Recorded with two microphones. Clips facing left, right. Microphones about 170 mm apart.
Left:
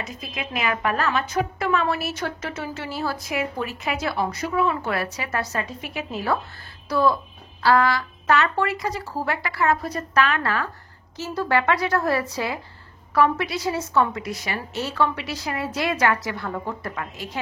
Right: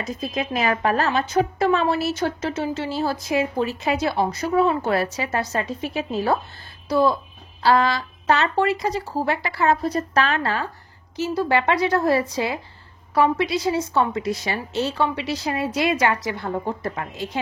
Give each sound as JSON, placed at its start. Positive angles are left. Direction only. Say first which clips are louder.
{"t": 0.0, "sound": "a woman's voice", "louder": "right 6 dB", "side_deg": -40}
{"t": 6.9, "sound": "a woman's voice", "louder": "right 2 dB", "side_deg": -20}
{"t": 11.1, "sound": "a woman's voice", "louder": "right 2 dB", "side_deg": -15}